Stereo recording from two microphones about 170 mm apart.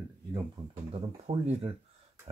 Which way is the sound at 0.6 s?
25° right (ahead or behind).